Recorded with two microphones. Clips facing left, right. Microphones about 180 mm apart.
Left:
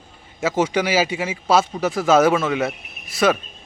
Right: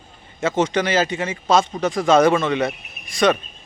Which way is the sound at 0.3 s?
10° left (ahead or behind).